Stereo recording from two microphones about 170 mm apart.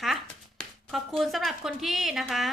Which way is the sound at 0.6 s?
Centre (ahead or behind).